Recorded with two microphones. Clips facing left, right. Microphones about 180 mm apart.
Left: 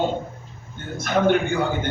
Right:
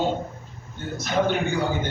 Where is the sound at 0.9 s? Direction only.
55° left (ahead or behind).